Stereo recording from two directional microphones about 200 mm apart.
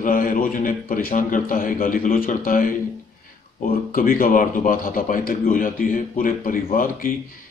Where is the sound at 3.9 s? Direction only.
45° left (ahead or behind).